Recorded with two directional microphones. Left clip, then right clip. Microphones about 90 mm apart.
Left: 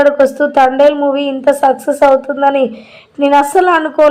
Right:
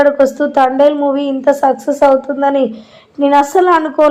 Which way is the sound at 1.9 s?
Centre (ahead or behind).